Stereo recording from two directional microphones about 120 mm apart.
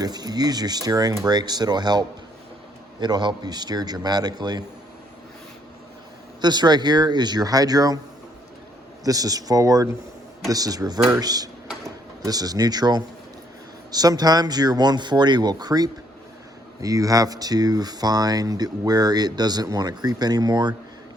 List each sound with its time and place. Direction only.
0.0 s speech: 35° right (ahead or behind)
6.4 s speech: 35° right (ahead or behind)
9.0 s speech: 30° right (ahead or behind)